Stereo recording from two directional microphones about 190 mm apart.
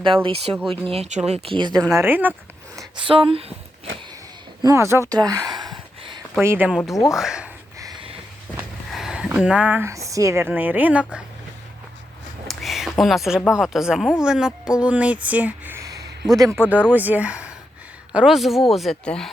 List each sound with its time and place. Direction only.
0.0 s speech: 25° right (ahead or behind)
2.0 s speech: 10° right (ahead or behind)
2.7 s speech: 25° right (ahead or behind)
3.9 s a sound: 90° right
4.6 s speech: 15° right (ahead or behind)
6.4 s a woman's voice: 10° right (ahead or behind)
7.8 s a sound: 20° right (ahead or behind)
8.9 s speech: centre (ahead or behind)
12.5 s a woman's voice: centre (ahead or behind)